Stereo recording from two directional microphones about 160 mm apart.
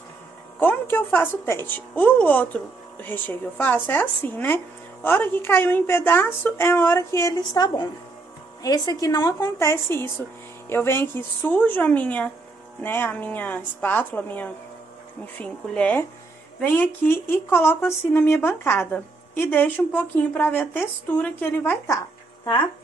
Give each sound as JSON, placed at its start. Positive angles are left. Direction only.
{"t": 0.6, "sound": "a woman's voice", "side_deg": 10}